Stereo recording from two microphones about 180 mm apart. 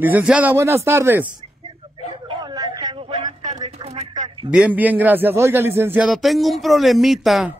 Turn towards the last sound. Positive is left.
turn(degrees=0)  # may be behind; listen again after turning